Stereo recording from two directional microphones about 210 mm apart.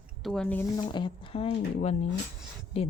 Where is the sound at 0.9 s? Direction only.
25° left (ahead or behind).